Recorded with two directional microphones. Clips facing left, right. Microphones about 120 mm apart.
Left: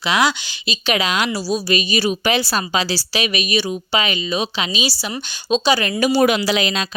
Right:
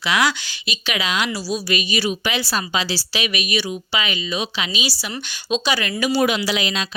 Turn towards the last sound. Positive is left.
turn(degrees=45)  # may be behind; listen again after turning